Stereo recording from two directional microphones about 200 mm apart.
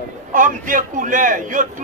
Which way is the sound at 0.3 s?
40° right (ahead or behind).